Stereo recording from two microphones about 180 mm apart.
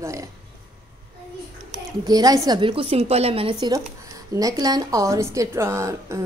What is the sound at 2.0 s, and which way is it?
A woman's voice, 20° right (ahead or behind).